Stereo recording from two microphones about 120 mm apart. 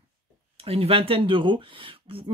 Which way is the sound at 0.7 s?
50° right (ahead or behind).